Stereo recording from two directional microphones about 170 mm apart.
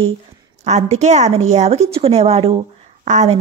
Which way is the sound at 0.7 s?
40° right (ahead or behind).